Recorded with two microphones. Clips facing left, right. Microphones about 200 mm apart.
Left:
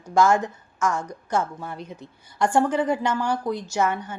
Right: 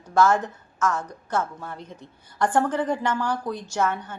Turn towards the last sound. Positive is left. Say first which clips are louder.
# left 1 dB
turn(degrees=10)  # may be behind; listen again after turning